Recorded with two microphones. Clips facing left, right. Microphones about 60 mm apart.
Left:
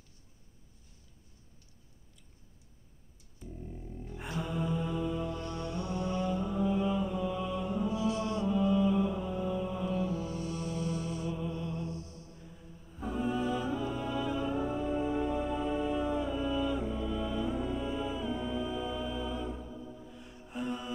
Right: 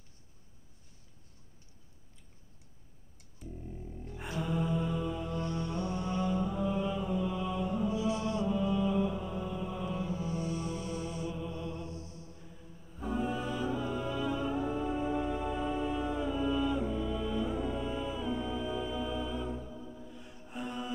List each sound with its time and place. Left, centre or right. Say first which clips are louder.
3.6 s mantra: left 2 dB; centre
5.4 s music: right 2 dB; right
6.1 s mantra: right 1 dB; centre
8.5 s music: left 5 dB; centre
10.1 s music: right 1 dB; right
11.2 s music: left 2 dB; centre
11.6 s mantra: left 2 dB; right
13.0 s music: left 1 dB; centre